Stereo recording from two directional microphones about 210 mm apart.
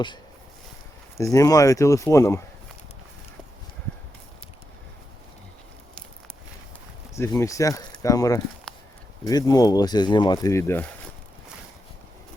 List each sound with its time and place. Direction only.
1.1 s speech: 15° left (ahead or behind)
7.2 s speech: 15° left (ahead or behind)
8.7 s a sound: 5° left (ahead or behind)
9.2 s speech: 20° left (ahead or behind)